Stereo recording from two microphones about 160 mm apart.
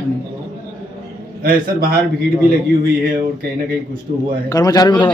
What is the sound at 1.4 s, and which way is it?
Speech, 65° right (ahead or behind).